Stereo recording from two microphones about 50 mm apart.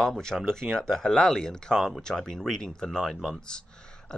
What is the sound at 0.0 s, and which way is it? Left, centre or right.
Speech, centre.